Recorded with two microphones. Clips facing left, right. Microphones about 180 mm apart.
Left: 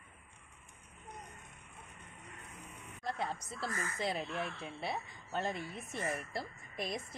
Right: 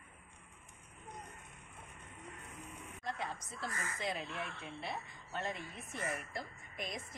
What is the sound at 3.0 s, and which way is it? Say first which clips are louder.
A woman's voice: left 4 dB; 35° left (ahead or behind).